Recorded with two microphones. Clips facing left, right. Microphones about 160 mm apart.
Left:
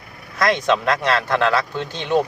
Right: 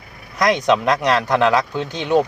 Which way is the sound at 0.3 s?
15° right (ahead or behind).